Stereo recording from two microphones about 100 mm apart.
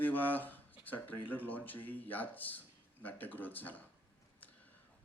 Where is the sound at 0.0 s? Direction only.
20° left (ahead or behind).